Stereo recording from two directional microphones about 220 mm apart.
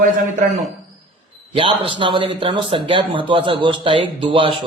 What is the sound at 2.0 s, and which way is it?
Speech, 20° right (ahead or behind).